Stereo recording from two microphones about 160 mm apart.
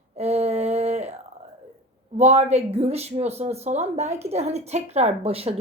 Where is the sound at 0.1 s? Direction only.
40° right (ahead or behind).